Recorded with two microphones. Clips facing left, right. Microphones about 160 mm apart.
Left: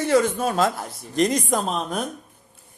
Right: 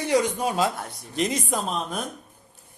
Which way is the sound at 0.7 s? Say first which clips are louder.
Left 5 dB; centre (ahead or behind).